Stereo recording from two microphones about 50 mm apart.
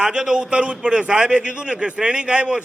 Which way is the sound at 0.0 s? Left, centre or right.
Centre.